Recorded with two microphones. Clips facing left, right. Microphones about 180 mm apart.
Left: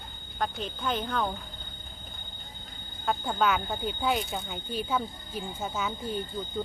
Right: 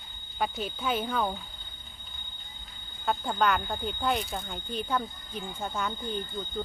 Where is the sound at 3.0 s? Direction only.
Centre (ahead or behind).